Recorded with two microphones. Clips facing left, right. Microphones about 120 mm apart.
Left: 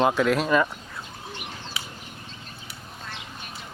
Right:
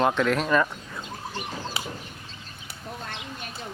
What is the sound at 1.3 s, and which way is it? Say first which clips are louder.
Bird: right 6 dB; 35° right (ahead or behind).